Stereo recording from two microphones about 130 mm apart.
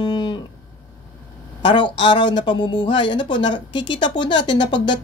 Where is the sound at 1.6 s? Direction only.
35° left (ahead or behind).